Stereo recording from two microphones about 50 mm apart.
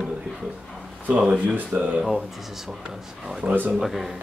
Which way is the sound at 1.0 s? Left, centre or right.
Right.